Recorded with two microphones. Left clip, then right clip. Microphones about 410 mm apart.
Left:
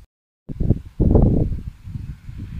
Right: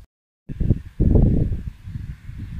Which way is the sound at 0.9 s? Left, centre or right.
Left.